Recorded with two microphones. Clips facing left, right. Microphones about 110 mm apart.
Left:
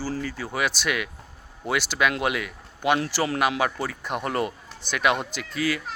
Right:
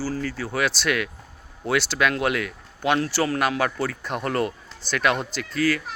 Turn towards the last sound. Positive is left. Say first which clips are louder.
# right 4 dB
turn(degrees=15)  # may be behind; listen again after turning